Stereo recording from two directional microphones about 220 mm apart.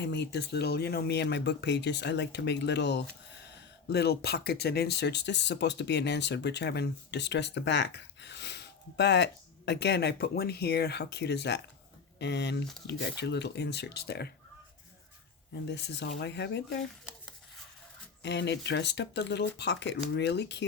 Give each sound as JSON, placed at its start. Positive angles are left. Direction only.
{"t": 0.0, "sound": "speech", "side_deg": 50}
{"t": 15.7, "sound": "speech", "side_deg": 50}
{"t": 18.2, "sound": "speech", "side_deg": 50}